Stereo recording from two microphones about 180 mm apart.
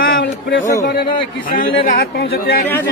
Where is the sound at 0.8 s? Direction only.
55° left (ahead or behind).